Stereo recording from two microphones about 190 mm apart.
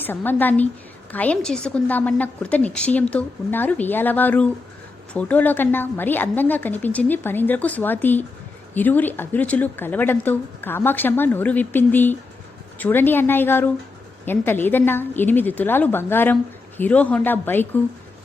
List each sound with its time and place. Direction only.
0.0 s speech: 10° left (ahead or behind)